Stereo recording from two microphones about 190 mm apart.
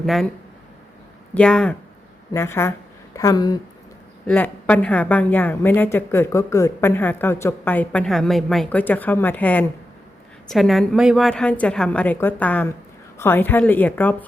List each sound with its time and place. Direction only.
0.0 s a woman's voice: centre (ahead or behind)
1.3 s a woman's voice: 5° left (ahead or behind)
4.3 s a woman's voice: 10° left (ahead or behind)